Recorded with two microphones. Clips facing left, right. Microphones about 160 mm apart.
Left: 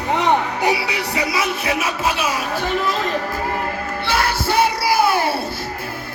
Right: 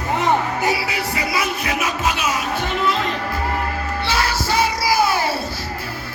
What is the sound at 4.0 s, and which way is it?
Music, 55° left (ahead or behind).